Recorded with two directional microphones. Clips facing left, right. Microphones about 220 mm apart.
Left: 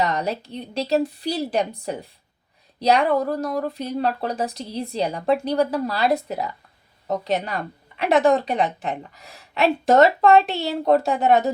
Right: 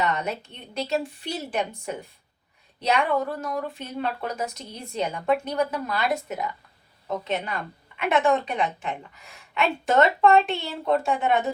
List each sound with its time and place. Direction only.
0.0 s a woman's voice: 35° left (ahead or behind)